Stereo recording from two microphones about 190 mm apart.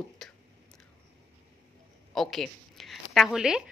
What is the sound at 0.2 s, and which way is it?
Whispering, centre (ahead or behind).